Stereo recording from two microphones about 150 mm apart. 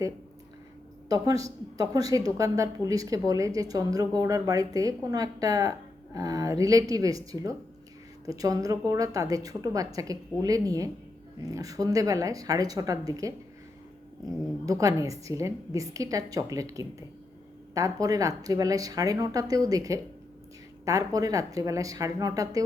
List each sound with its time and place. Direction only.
1.0 s speech: 25° right (ahead or behind)
14.7 s speech: 20° right (ahead or behind)